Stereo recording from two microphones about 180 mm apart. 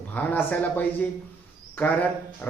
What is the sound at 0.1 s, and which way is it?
Speech, 10° left (ahead or behind).